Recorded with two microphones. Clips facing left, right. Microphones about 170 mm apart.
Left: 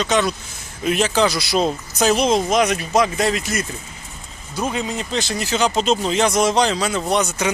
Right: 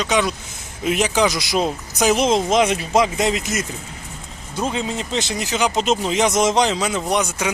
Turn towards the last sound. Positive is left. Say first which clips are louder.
# left 1 dB
turn(degrees=-10)  # may be behind; listen again after turning